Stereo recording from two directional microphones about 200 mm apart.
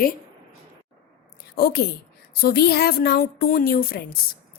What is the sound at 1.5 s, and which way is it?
A woman's voice, 50° left (ahead or behind).